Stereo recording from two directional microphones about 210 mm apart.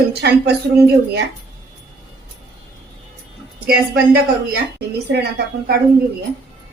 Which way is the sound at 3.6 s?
45° right (ahead or behind).